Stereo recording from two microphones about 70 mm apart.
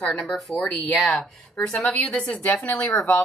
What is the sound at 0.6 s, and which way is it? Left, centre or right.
Speech, left.